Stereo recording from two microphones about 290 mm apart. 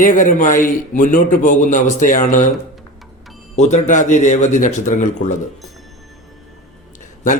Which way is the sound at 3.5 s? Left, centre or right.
Left.